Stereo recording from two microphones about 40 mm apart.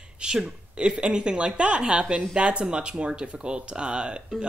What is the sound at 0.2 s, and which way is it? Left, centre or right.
Speech, centre.